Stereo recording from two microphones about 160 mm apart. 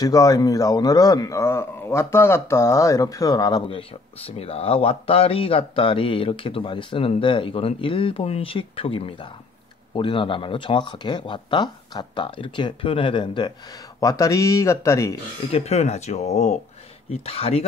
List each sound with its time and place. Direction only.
0.0 s a man's voice: 20° left (ahead or behind)
15.5 s speech: 40° left (ahead or behind)
17.1 s a man's voice: 40° left (ahead or behind)